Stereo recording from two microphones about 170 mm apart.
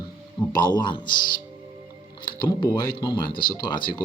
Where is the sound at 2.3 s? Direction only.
25° left (ahead or behind).